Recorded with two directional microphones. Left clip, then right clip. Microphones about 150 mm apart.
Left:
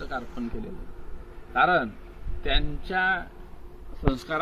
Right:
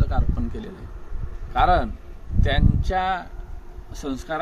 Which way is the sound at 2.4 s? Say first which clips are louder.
Right 3 dB; 45° right (ahead or behind).